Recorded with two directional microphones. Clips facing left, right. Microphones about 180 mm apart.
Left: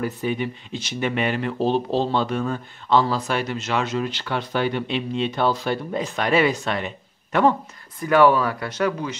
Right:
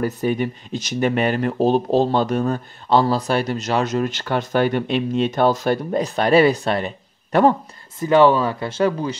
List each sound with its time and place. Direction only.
0.0 s speech: 45° right (ahead or behind)
8.0 s speech: 25° right (ahead or behind)